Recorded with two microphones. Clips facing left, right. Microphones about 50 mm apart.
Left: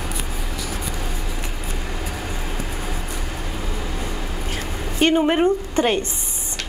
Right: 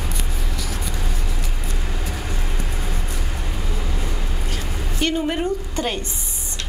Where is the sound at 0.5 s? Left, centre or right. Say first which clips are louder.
Left 1 dB; centre.